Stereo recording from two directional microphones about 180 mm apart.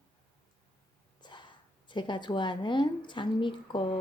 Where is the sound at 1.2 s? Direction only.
25° left (ahead or behind).